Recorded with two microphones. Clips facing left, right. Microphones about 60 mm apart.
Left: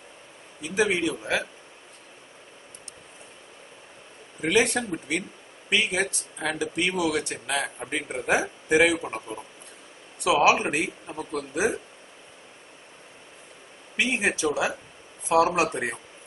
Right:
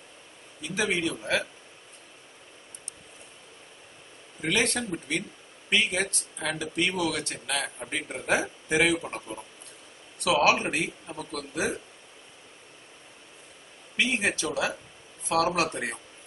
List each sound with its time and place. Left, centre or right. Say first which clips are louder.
0.6 s a man's voice: left 4 dB; centre
4.4 s a man's voice: left 4 dB; centre
10.2 s a man's voice: left 3 dB; centre
13.9 s a man's voice: left 2 dB; centre